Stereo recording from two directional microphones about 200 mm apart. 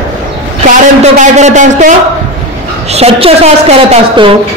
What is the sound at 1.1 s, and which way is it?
A woman's voice, 35° right (ahead or behind).